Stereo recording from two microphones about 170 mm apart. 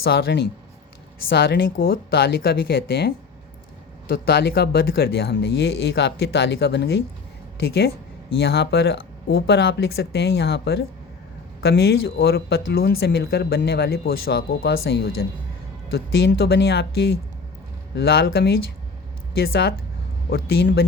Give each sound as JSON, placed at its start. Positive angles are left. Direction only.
{"t": 0.0, "sound": "speech", "side_deg": 70}
{"t": 1.3, "sound": "speech", "side_deg": 65}
{"t": 4.1, "sound": "speech", "side_deg": 65}
{"t": 17.9, "sound": "speech", "side_deg": 70}